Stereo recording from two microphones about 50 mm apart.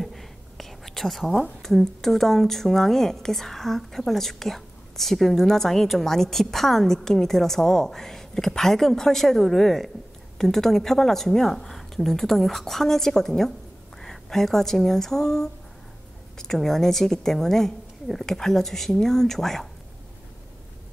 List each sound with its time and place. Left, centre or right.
0.0 s whispering: centre
1.6 s a woman's voice: centre